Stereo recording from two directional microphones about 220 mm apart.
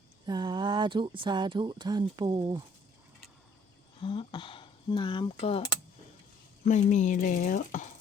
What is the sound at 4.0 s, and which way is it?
Speech, 20° left (ahead or behind).